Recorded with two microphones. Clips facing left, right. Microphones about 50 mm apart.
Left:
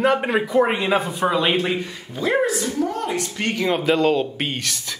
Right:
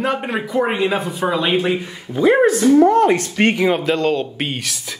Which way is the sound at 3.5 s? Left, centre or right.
Centre.